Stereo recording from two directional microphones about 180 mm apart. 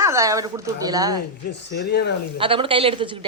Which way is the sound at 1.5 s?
75° left (ahead or behind).